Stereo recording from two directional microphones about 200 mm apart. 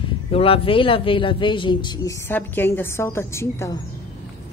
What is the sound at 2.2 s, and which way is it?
A woman's voice, 10° left (ahead or behind).